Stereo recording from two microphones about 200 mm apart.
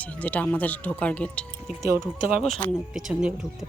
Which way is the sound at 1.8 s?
15° right (ahead or behind).